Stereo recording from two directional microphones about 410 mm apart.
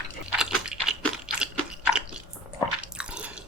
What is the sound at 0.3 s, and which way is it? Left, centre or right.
Chewing, centre.